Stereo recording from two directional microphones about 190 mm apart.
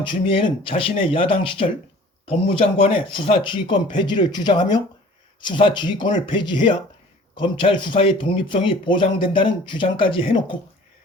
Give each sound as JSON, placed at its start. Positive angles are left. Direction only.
{"t": 0.0, "sound": "speech", "side_deg": 25}